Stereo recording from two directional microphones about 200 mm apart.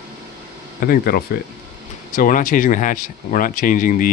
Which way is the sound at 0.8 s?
45° left (ahead or behind).